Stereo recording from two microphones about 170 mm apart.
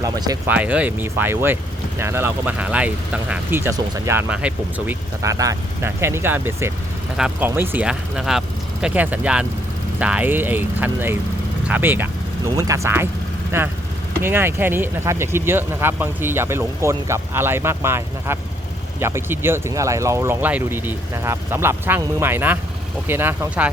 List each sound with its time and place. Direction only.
0.0 s speech: 20° right (ahead or behind)
0.5 s speech: 10° right (ahead or behind)
5.2 s speech: 20° right (ahead or behind)